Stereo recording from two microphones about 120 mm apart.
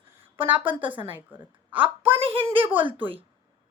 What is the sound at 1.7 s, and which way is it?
Speech, 50° right (ahead or behind).